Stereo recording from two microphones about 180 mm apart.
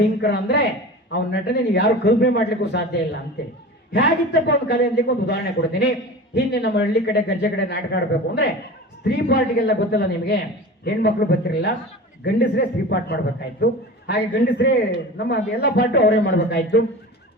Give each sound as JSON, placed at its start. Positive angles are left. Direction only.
{"t": 0.2, "sound": "a man's voice", "side_deg": 70}
{"t": 12.2, "sound": "speech", "side_deg": 80}